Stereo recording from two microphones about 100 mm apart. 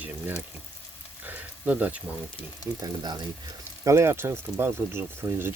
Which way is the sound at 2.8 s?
45° right (ahead or behind).